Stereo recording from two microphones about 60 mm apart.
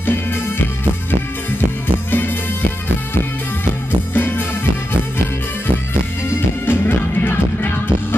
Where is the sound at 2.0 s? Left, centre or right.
Left.